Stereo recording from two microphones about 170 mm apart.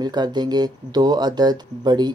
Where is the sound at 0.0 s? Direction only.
25° right (ahead or behind).